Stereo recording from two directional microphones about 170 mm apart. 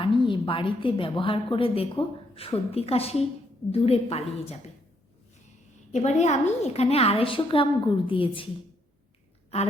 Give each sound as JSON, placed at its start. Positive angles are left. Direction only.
{"t": 0.0, "sound": "a woman's voice", "side_deg": 30}
{"t": 5.9, "sound": "a woman's voice", "side_deg": 40}